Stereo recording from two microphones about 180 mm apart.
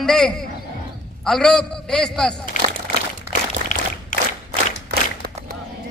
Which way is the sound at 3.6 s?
50° right (ahead or behind).